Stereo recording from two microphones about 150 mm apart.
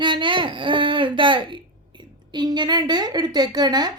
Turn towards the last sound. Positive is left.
turn(degrees=-25)  # may be behind; listen again after turning